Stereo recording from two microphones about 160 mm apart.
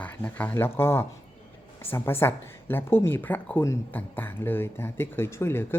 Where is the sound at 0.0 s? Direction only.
10° left (ahead or behind).